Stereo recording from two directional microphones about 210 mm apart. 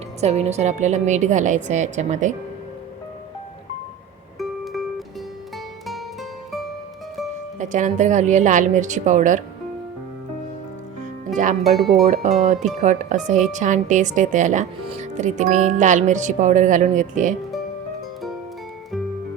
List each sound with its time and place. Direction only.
0.2 s speech: 30° right (ahead or behind)
4.4 s music: centre (ahead or behind)
7.6 s speech: 35° right (ahead or behind)
11.6 s speech: centre (ahead or behind)
12.0 s speech: 30° right (ahead or behind)